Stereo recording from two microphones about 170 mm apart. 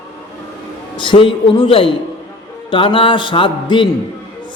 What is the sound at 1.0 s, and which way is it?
A man's voice, 30° left (ahead or behind).